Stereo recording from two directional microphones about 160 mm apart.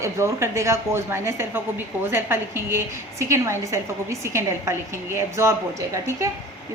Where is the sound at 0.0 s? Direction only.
20° right (ahead or behind).